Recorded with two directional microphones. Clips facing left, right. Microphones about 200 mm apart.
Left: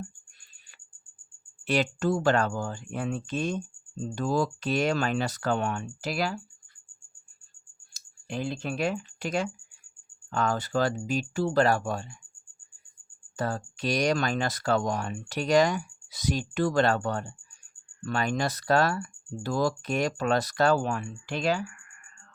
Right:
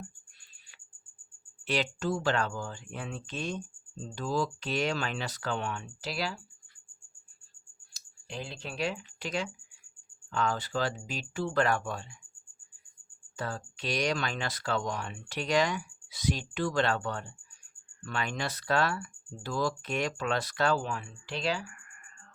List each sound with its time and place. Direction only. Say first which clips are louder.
1.6 s speech: left 5 dB; 45° left (ahead or behind)
8.3 s speech: left 8 dB; 50° left (ahead or behind)
13.3 s speech: left 6 dB; 45° left (ahead or behind)